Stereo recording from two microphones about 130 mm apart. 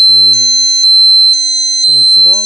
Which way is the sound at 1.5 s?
55° right (ahead or behind).